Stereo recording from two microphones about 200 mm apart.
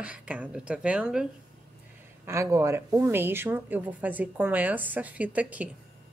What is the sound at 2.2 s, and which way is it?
Speech, 15° right (ahead or behind).